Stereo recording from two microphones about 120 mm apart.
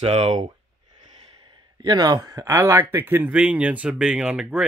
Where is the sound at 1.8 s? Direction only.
35° right (ahead or behind).